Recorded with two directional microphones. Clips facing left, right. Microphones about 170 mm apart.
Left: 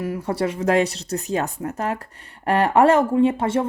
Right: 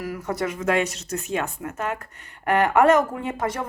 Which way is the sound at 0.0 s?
30° left (ahead or behind).